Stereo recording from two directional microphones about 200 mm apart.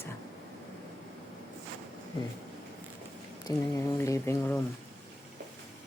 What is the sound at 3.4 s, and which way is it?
Speech, 15° left (ahead or behind).